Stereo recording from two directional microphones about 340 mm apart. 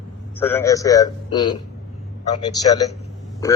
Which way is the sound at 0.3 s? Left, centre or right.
Centre.